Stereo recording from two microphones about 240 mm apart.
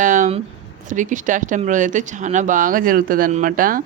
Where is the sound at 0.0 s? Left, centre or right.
Right.